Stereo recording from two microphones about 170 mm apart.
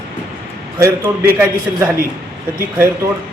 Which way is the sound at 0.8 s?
15° right (ahead or behind).